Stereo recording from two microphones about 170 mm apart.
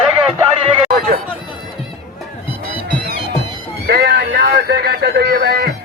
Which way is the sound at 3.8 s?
70° right (ahead or behind).